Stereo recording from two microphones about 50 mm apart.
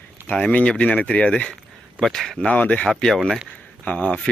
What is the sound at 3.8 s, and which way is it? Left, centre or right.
Speech, left.